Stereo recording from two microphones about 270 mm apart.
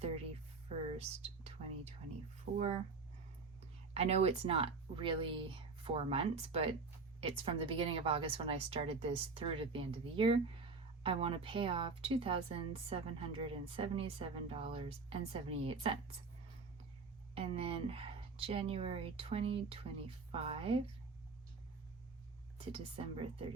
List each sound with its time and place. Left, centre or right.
0.9 s speech: right
3.9 s speech: right
17.3 s speech: right
22.5 s speech: right